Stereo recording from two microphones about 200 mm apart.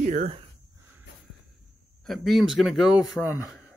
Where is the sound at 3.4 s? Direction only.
15° left (ahead or behind).